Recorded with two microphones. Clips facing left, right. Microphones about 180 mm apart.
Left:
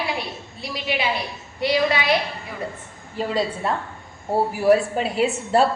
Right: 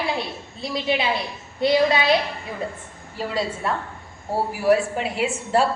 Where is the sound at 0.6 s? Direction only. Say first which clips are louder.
Right 4 dB; 30° right (ahead or behind).